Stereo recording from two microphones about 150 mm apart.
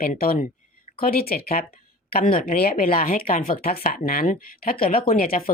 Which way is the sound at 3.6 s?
90° left.